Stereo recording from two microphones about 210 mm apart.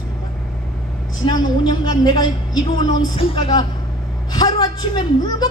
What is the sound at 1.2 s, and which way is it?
A woman's voice, 20° left (ahead or behind).